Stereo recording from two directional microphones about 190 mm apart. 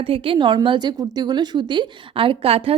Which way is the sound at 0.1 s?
25° right (ahead or behind).